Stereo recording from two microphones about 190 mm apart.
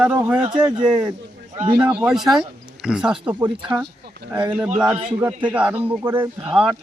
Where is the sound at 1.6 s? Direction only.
25° right (ahead or behind).